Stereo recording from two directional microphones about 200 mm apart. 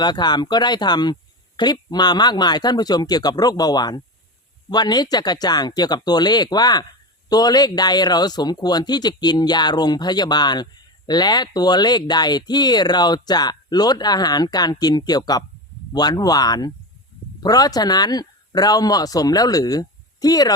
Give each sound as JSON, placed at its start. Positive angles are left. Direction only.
{"t": 0.0, "sound": "speech", "side_deg": 20}